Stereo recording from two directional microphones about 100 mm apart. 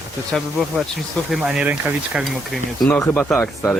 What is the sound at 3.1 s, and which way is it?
Speech, 10° left (ahead or behind).